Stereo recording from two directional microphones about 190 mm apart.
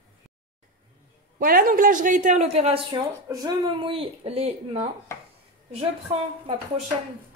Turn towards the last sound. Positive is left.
turn(degrees=-30)  # may be behind; listen again after turning